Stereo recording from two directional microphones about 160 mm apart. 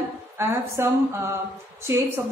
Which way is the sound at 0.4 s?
15° right (ahead or behind).